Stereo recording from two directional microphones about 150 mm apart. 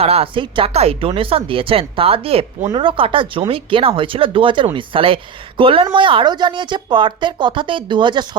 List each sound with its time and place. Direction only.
0.0 s speech: 40° right (ahead or behind)